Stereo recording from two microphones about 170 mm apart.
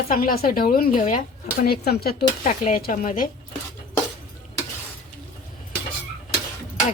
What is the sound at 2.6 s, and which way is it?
Speech, 55° left (ahead or behind).